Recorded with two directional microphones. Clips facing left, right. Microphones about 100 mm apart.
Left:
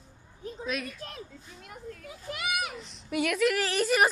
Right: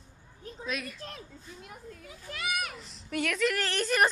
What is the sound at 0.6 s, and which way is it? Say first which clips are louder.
Speech: left 2 dB; centre (ahead or behind).